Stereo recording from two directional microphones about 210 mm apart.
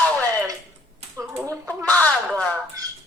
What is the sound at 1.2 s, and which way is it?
Speech, 10° right (ahead or behind).